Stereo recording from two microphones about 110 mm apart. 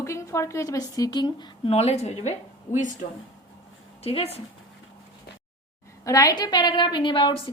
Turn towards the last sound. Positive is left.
turn(degrees=50)  # may be behind; listen again after turning